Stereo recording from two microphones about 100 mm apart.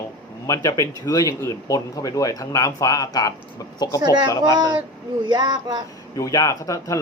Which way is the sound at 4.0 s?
45° right (ahead or behind).